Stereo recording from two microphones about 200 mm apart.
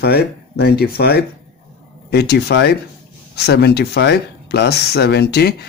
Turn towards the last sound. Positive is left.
turn(degrees=55)  # may be behind; listen again after turning